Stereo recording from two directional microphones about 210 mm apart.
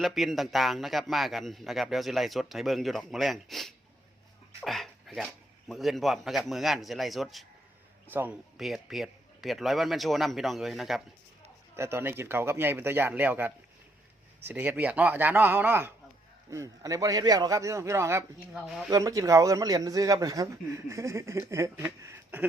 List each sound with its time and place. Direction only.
0.0 s a man's voice: centre (ahead or behind)
11.8 s speech: 10° right (ahead or behind)